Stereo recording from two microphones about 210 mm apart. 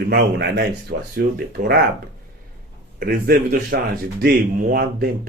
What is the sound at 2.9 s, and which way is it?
Speech, 45° right (ahead or behind).